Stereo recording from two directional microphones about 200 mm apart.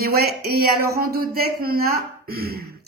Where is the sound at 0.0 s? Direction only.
50° right (ahead or behind).